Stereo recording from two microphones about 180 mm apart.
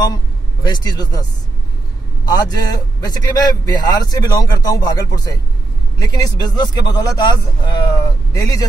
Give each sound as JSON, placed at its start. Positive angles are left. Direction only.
{"t": 0.7, "sound": "a man's voice", "side_deg": 20}
{"t": 2.2, "sound": "a man's voice", "side_deg": 20}